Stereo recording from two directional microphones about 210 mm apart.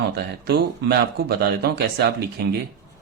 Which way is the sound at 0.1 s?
50° right (ahead or behind).